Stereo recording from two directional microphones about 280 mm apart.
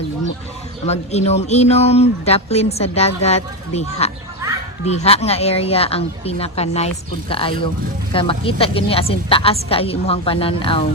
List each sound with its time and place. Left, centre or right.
0.9 s a woman's voice: left